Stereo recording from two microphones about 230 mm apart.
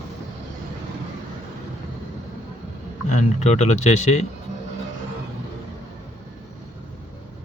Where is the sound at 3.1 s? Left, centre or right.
Left.